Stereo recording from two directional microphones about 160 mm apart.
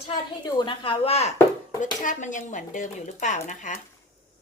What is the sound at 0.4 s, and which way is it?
Speech, 30° left (ahead or behind).